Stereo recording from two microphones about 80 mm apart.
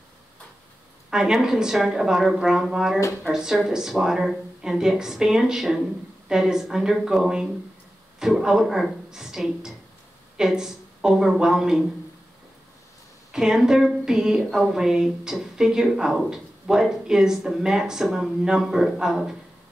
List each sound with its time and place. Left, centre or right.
1.1 s a woman's voice: centre
13.3 s a woman's voice: centre